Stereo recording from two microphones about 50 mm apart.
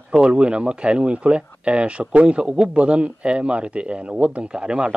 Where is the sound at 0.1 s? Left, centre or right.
Centre.